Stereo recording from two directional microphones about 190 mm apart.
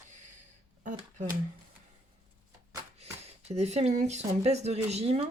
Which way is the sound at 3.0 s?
35° right (ahead or behind).